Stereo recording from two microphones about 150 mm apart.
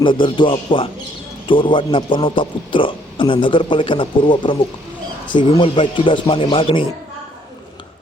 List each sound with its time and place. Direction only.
0.0 s a man's voice: 35° left (ahead or behind)